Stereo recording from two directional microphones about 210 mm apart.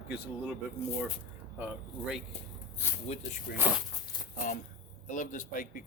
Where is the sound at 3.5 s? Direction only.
50° left (ahead or behind).